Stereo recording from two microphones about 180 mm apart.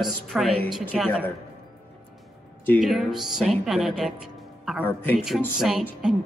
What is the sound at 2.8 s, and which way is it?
A woman's voice, centre (ahead or behind).